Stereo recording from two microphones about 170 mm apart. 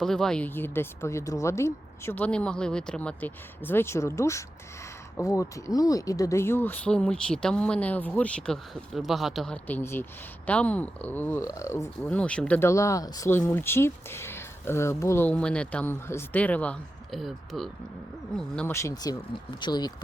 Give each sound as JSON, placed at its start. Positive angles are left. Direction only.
{"t": 0.0, "sound": "speech", "side_deg": 5}
{"t": 18.7, "sound": "speech", "side_deg": 15}